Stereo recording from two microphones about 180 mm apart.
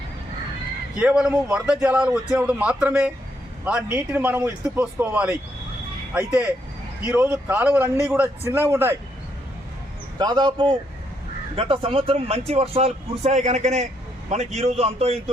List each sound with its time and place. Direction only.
0.9 s speech: 5° right (ahead or behind)
10.2 s a man's voice: 25° right (ahead or behind)